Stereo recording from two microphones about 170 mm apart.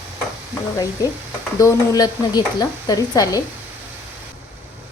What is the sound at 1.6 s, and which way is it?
A woman's voice, 20° left (ahead or behind).